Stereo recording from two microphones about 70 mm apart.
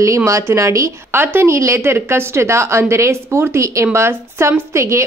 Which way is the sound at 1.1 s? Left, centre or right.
Right.